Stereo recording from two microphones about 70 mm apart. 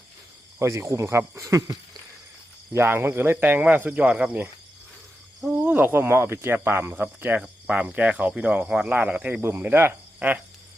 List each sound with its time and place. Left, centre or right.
0.6 s speech: right
2.7 s speech: right; by 4.4 s centre
5.5 s speech: right
9.6 s insect: right